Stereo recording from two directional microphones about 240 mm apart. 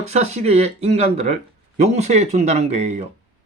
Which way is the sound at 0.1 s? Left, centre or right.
Right.